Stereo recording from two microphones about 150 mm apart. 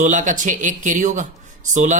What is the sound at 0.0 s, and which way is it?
Speech, 55° right (ahead or behind).